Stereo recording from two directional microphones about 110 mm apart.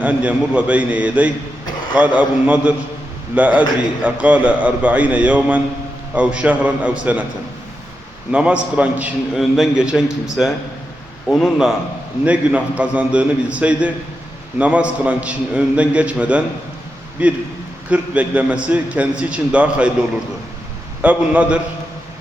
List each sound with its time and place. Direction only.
0.0 s a man's voice: 10° right (ahead or behind)
8.3 s a man's voice: 10° right (ahead or behind)
11.3 s a man's voice: 5° left (ahead or behind)
12.2 s a man's voice: 10° right (ahead or behind)